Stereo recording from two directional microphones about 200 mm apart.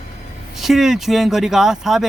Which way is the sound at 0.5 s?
Centre (ahead or behind).